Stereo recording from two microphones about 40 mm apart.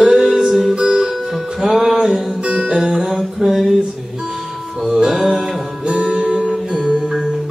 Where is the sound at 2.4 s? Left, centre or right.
Right; by 5.8 s centre.